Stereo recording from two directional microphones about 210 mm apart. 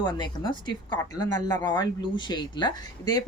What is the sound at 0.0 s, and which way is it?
A woman's voice, 20° left (ahead or behind).